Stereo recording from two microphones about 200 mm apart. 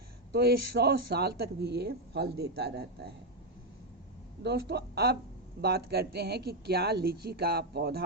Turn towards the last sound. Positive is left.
turn(degrees=-50)  # may be behind; listen again after turning